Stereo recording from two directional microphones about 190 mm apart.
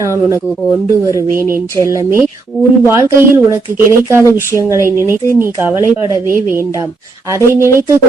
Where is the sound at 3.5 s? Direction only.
15° right (ahead or behind).